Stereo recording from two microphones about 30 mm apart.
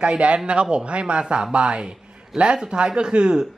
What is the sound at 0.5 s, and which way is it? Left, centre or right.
A man's voice, right.